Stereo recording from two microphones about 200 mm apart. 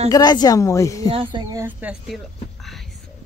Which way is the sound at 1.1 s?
25° right (ahead or behind).